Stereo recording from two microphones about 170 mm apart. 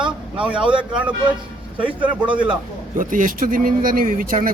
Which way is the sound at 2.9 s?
50° right (ahead or behind).